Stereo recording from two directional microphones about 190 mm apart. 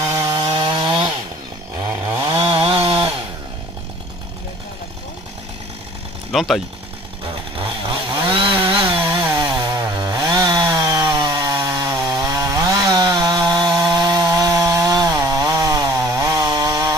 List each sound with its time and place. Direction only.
0.1 s chainsaw: 15° right (ahead or behind)
2.1 s chainsaw: 30° right (ahead or behind)
6.3 s speech: centre (ahead or behind)
7.5 s chainsaw: 25° right (ahead or behind)
8.8 s chainsaw: 10° right (ahead or behind)